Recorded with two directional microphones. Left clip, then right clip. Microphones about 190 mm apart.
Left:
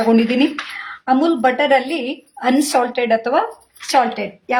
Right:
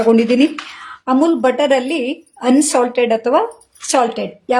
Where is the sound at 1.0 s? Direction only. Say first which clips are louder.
Right 1 dB; 45° right (ahead or behind).